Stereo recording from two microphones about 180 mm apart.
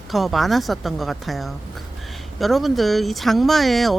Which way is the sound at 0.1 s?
Centre (ahead or behind).